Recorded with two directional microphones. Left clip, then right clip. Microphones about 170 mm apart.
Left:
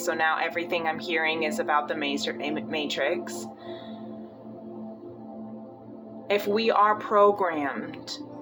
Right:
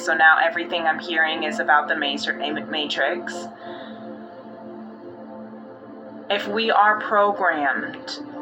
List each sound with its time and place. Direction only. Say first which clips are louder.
0.0 s speech: right 9 dB; 30° left (ahead or behind)
6.2 s speech: right 2 dB; 25° left (ahead or behind)